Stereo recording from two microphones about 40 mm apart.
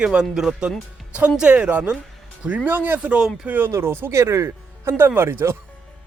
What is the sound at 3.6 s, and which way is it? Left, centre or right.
Speech, right.